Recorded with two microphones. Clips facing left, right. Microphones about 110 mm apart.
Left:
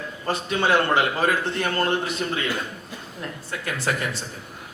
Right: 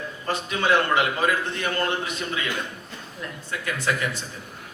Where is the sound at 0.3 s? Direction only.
30° left (ahead or behind).